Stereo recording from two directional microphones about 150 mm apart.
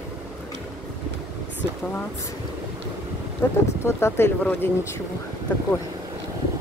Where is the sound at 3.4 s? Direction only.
15° left (ahead or behind).